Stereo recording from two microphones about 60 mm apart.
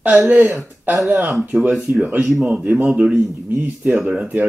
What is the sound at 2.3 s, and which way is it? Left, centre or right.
Speech, centre.